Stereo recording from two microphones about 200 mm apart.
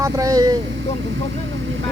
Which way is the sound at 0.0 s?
15° right (ahead or behind).